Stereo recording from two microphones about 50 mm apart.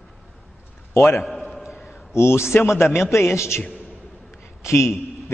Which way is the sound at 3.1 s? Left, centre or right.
Left.